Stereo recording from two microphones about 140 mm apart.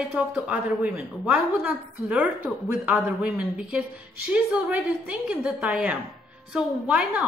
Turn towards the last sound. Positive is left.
turn(degrees=-10)  # may be behind; listen again after turning